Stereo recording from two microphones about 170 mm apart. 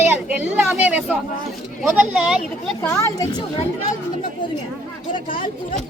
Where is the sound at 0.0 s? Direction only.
10° right (ahead or behind).